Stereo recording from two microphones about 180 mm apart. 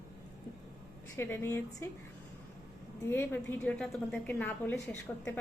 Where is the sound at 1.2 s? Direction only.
10° left (ahead or behind).